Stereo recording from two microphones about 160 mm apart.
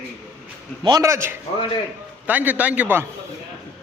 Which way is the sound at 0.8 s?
25° right (ahead or behind).